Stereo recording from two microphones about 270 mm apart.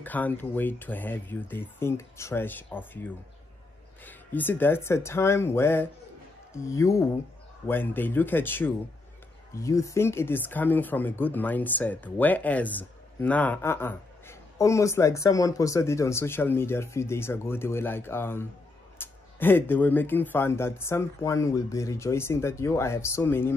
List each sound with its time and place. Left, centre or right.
0.0 s speech: centre